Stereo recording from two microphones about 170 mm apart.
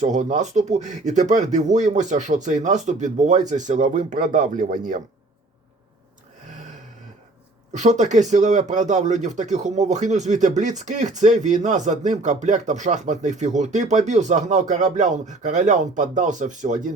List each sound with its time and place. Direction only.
0.0 s speech: 45° right (ahead or behind)
7.7 s speech: 45° right (ahead or behind)